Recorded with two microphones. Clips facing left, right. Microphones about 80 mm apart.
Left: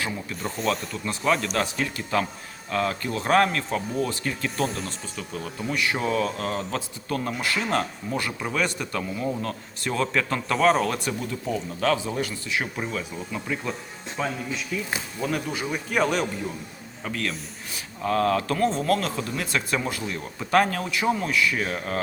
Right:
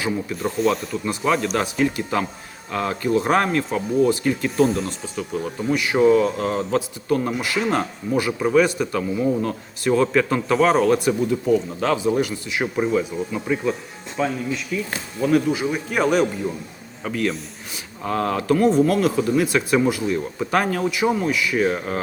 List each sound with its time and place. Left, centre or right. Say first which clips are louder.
0.0 s speech: right 6 dB; centre
4.5 s speech: right 10 dB; centre
5.1 s speech: right 9 dB; centre
11.8 s speech: right 4 dB; right
14.2 s speech: right 6 dB; centre
17.1 s speech: right 6 dB; centre